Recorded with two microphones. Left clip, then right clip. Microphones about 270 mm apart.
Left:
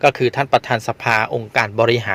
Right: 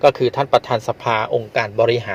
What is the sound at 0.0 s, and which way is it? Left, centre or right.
Speech, left.